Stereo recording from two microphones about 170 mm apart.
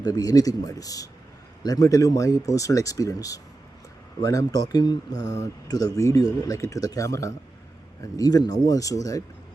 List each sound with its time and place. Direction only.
0.0 s speech: 20° left (ahead or behind)